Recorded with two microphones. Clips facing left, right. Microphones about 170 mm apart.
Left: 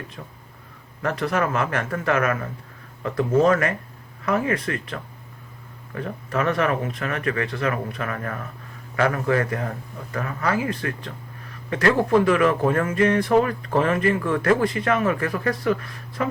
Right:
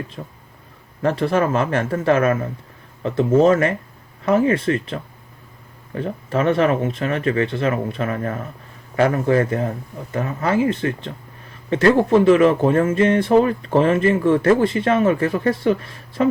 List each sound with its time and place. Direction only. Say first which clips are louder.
0.2 s speech: right 5 dB; 35° right (ahead or behind)